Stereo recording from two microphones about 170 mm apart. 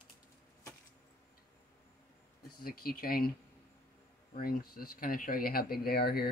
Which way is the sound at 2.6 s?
60° left (ahead or behind).